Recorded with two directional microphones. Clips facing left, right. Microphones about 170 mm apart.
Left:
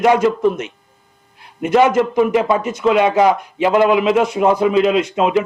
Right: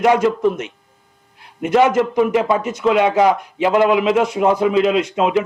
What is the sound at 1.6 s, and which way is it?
Speech, 15° left (ahead or behind).